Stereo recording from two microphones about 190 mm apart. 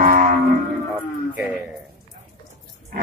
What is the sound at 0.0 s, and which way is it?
Music, 50° right (ahead or behind).